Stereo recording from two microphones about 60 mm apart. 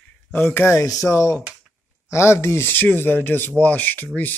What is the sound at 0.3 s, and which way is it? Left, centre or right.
Speech, left.